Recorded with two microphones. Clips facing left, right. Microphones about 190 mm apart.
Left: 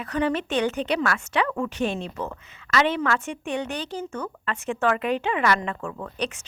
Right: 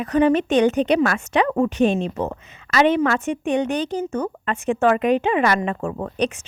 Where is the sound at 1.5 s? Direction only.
35° right (ahead or behind).